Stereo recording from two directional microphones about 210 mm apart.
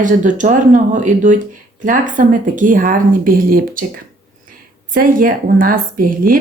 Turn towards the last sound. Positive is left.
turn(degrees=-40)  # may be behind; listen again after turning